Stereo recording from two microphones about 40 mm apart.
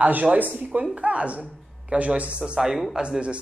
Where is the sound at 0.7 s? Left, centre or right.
Right.